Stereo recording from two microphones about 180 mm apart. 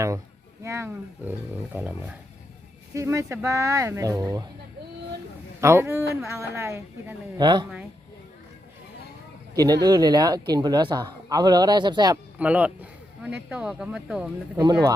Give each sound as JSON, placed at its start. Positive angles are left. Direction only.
{"t": 0.6, "sound": "speech", "side_deg": -15}
{"t": 5.5, "sound": "speech", "side_deg": -15}
{"t": 7.4, "sound": "a man's voice", "side_deg": -25}
{"t": 9.6, "sound": "a man's voice", "side_deg": -20}
{"t": 12.1, "sound": "speech", "side_deg": -10}
{"t": 14.6, "sound": "a man's voice", "side_deg": -20}